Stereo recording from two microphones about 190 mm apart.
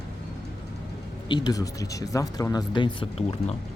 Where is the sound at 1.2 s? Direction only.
20° left (ahead or behind).